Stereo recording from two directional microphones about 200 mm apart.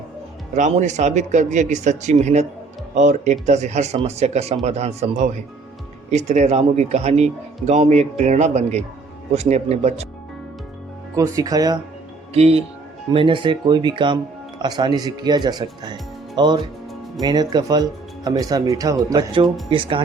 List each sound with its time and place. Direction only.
0.5 s speech: 35° right (ahead or behind)
11.1 s speech: 15° right (ahead or behind)
12.3 s speech: 30° right (ahead or behind)